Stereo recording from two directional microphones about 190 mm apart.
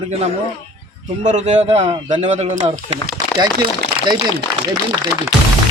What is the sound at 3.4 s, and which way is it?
Speech, 25° right (ahead or behind).